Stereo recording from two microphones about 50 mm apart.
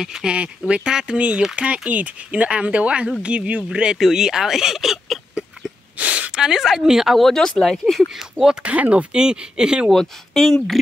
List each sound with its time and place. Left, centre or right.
0.0 s speech: centre
0.3 s speech: right; by 5.2 s centre
5.9 s a sound: right
6.6 s speech: centre
8.1 s speech: centre
8.6 s speech: right
9.8 s speech: centre